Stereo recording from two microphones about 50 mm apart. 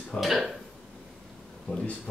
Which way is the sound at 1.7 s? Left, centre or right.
Left.